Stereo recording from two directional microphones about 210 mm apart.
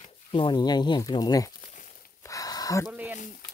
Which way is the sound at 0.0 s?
25° left (ahead or behind).